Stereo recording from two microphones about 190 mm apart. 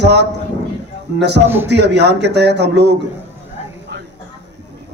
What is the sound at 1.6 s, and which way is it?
Speech, 65° right (ahead or behind).